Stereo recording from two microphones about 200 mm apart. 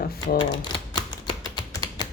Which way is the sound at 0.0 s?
50° left (ahead or behind).